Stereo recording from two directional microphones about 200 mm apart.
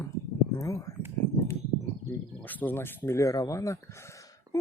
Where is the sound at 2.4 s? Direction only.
10° left (ahead or behind).